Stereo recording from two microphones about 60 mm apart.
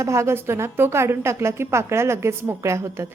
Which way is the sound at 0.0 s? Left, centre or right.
Right.